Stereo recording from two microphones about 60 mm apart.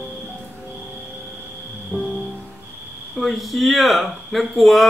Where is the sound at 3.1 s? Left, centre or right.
Centre.